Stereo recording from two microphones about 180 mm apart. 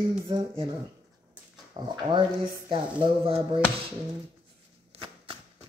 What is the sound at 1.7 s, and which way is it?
Speech, 25° right (ahead or behind).